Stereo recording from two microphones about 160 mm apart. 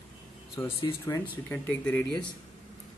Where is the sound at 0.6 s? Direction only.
15° left (ahead or behind).